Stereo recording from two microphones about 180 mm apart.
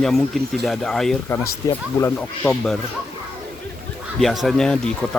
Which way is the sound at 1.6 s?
20° left (ahead or behind).